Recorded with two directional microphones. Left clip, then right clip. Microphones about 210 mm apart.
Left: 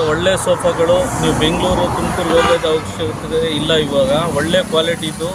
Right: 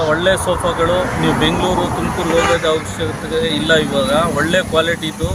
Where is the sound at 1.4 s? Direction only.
Centre (ahead or behind).